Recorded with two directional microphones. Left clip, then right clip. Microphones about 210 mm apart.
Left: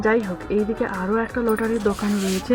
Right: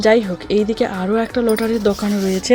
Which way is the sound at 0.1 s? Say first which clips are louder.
Right 6 dB; 20° right (ahead or behind).